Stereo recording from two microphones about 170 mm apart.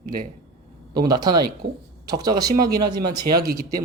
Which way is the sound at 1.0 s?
25° right (ahead or behind).